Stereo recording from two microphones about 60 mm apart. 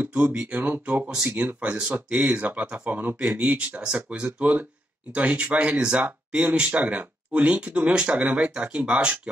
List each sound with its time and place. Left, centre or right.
0.0 s speech: right